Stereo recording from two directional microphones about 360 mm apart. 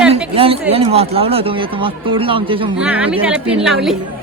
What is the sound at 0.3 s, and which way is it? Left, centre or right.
Speech, centre.